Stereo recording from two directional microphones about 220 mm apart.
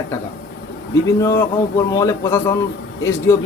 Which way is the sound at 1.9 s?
15° left (ahead or behind).